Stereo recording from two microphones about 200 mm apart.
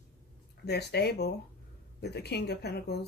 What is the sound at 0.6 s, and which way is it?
Speech, 55° left (ahead or behind).